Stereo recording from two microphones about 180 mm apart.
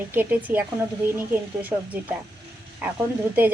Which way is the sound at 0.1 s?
10° right (ahead or behind).